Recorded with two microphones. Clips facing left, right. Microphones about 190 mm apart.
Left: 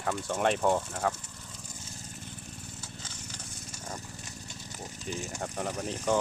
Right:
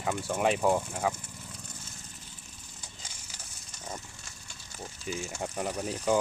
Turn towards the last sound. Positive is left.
turn(degrees=-10)  # may be behind; listen again after turning